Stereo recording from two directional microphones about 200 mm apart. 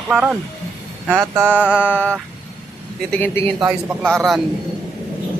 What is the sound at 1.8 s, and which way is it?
Speech, 10° left (ahead or behind).